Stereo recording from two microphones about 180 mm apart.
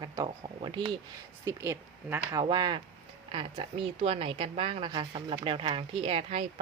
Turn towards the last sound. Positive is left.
turn(degrees=-35)  # may be behind; listen again after turning